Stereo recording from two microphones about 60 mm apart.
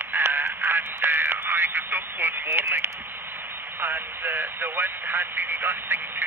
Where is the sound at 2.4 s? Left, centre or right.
Right.